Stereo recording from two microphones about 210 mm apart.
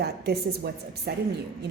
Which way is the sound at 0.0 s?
50° right (ahead or behind).